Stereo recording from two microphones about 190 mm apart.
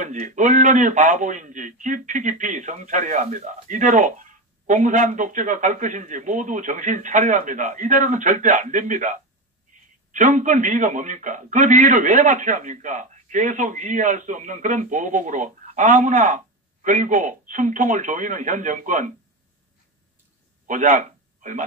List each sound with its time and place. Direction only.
0.0 s a man's voice: 40° right (ahead or behind)
20.6 s a man's voice: 45° right (ahead or behind)